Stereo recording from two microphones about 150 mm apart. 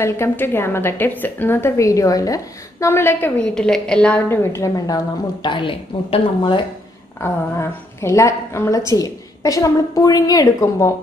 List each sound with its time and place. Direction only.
0.0 s a woman's voice: 15° left (ahead or behind); by 6.6 s 35° left (ahead or behind)
7.2 s a woman's voice: 15° left (ahead or behind)